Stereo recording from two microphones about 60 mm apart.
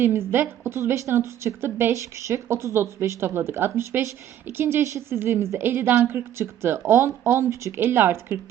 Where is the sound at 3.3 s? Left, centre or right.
Right.